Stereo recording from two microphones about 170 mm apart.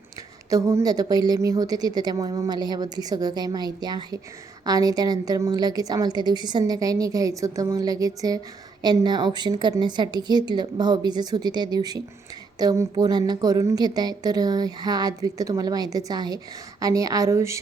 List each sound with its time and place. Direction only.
0.5 s a woman's voice: 20° right (ahead or behind)